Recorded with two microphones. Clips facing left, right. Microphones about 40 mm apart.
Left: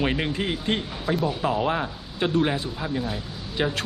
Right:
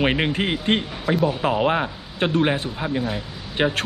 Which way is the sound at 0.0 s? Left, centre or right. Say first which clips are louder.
Right 4 dB; right.